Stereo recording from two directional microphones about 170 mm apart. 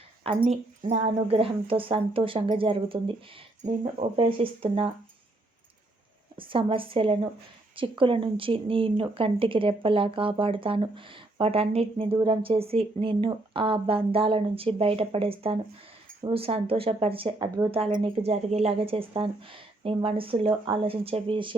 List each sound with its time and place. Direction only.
0.4 s speech: 40° right (ahead or behind)
6.3 s speech: 30° right (ahead or behind)